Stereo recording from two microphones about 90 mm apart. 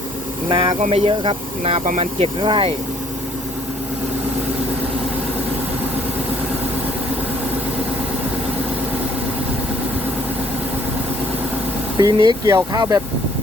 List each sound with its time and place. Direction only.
0.4 s speech: 65° right (ahead or behind)
11.9 s speech: 50° right (ahead or behind)